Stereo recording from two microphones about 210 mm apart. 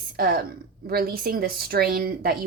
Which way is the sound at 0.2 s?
45° right (ahead or behind).